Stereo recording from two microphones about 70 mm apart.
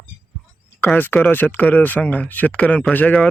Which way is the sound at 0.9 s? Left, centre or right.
Left.